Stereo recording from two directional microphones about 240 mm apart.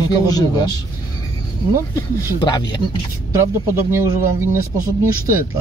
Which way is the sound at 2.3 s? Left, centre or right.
Centre.